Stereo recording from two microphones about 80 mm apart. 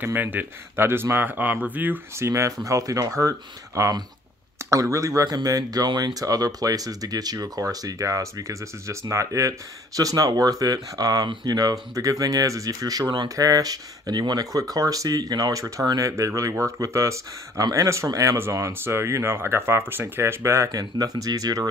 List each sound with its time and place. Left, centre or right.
0.0 s speech: right
2.1 s speech: right
15.6 s speech: right
20.7 s speech: right